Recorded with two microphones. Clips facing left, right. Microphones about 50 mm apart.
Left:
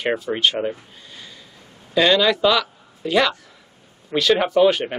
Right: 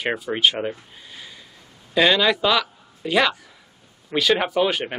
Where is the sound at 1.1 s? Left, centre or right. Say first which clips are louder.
Even; centre.